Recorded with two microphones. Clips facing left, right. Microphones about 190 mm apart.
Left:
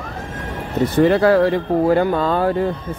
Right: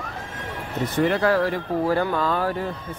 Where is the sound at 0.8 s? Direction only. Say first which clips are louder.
Left 7 dB; 35° left (ahead or behind).